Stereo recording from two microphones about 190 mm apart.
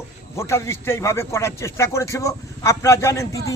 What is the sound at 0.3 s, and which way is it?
Speech, 15° left (ahead or behind).